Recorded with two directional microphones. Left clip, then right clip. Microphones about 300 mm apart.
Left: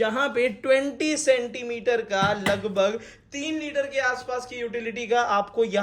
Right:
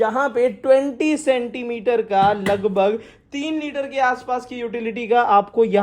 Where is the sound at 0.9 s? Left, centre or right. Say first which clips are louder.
Right 3 dB; centre.